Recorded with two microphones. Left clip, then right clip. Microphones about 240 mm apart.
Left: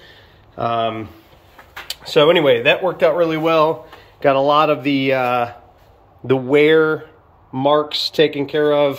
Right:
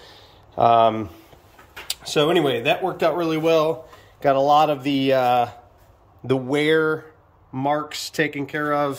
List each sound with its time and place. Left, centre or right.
0.0 s a sound: centre
2.0 s speech: centre
7.6 s speech: centre